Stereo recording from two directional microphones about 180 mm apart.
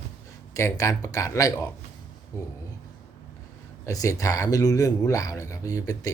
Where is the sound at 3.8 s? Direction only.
15° left (ahead or behind).